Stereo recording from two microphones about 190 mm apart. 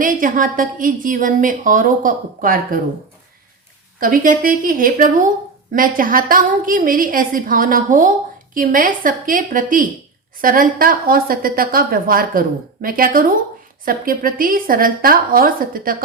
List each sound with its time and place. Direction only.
0.0 s a woman's voice: 45° right (ahead or behind)
4.0 s a woman's voice: 45° right (ahead or behind)